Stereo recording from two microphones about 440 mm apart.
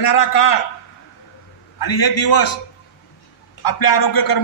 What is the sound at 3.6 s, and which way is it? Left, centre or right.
Speech, left.